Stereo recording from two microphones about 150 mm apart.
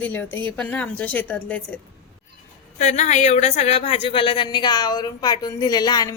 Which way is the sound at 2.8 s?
50° left (ahead or behind).